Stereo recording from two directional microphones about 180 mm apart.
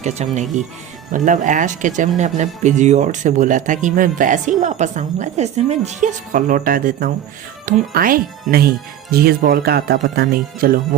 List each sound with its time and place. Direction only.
0.0 s speech: 40° right (ahead or behind); by 10.8 s 55° right (ahead or behind)